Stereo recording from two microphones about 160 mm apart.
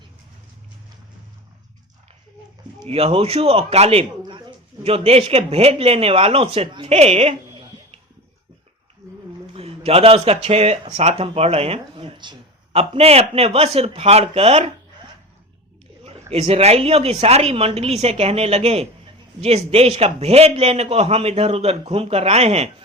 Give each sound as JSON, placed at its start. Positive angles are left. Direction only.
{"t": 2.8, "sound": "speech", "side_deg": -40}
{"t": 9.6, "sound": "speech", "side_deg": -40}
{"t": 16.3, "sound": "speech", "side_deg": -40}